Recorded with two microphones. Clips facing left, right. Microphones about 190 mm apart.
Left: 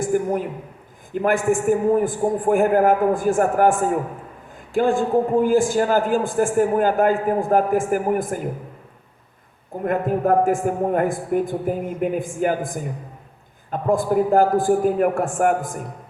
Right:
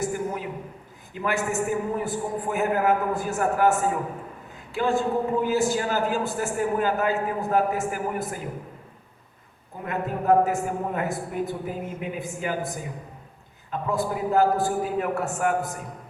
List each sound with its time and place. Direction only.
0.0 s a man's voice: 50° left (ahead or behind)
9.8 s a man's voice: 50° left (ahead or behind)